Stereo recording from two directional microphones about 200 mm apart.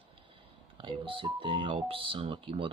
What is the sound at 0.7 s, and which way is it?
Speech, 25° right (ahead or behind).